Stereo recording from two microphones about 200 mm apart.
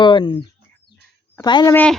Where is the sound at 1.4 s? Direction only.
20° left (ahead or behind).